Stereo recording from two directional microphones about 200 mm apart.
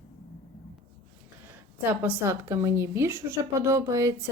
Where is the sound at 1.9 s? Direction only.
10° right (ahead or behind).